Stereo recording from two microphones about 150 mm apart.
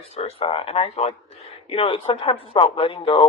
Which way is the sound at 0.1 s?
40° left (ahead or behind).